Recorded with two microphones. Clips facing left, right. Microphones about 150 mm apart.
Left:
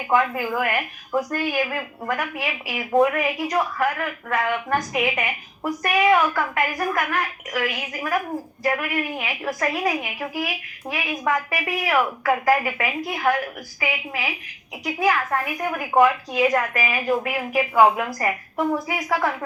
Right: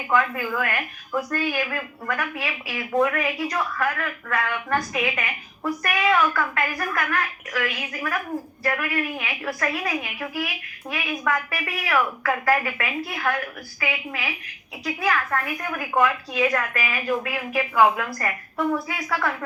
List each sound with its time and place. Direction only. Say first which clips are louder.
0.1 s a woman's voice: left 2 dB; 25° left (ahead or behind)